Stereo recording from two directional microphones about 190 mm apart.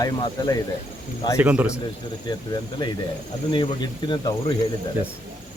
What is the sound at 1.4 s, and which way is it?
Speech, 10° right (ahead or behind).